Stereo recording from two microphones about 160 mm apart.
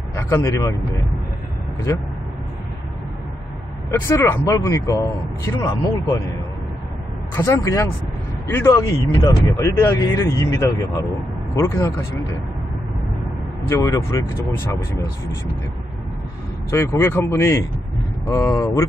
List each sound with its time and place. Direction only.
0.1 s speech: 15° left (ahead or behind)
4.1 s speech: 20° left (ahead or behind)
7.3 s speech: 15° left (ahead or behind)
13.7 s speech: 20° left (ahead or behind)
16.7 s speech: 15° left (ahead or behind)